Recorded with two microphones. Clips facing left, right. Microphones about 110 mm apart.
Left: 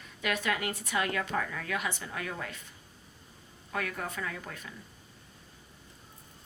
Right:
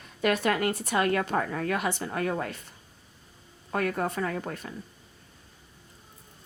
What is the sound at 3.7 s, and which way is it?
A woman's voice, 45° right (ahead or behind).